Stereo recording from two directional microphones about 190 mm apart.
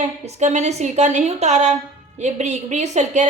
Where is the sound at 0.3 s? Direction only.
35° right (ahead or behind).